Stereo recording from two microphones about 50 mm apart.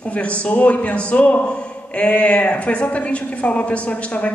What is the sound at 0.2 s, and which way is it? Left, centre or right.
A woman's voice, left.